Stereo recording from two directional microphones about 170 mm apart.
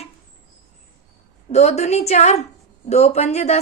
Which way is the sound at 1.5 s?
40° left (ahead or behind).